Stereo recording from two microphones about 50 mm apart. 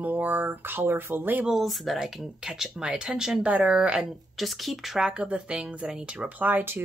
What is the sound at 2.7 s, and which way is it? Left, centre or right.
Speech, centre.